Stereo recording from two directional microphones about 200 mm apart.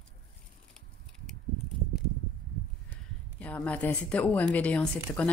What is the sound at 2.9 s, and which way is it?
Speech, 10° left (ahead or behind).